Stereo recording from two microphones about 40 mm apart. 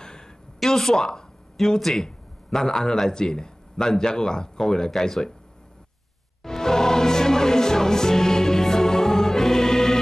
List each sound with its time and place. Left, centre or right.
0.0 s a sound: centre
0.6 s a man's voice: centre
6.4 s music: centre